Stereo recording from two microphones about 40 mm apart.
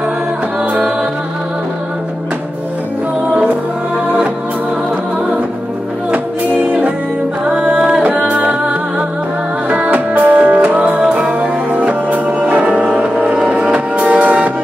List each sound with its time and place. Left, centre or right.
6.1 s music: right
7.5 s music: right
9.7 s music: right
11.0 s music: right
11.3 s music: right
13.9 s music: right